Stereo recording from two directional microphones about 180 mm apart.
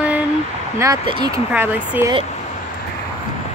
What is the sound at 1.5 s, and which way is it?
Female singing, 10° right (ahead or behind).